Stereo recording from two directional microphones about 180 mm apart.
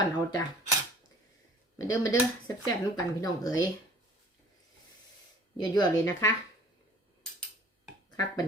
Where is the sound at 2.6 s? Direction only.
20° left (ahead or behind).